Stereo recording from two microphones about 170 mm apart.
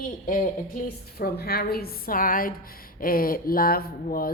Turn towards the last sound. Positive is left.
turn(degrees=60)  # may be behind; listen again after turning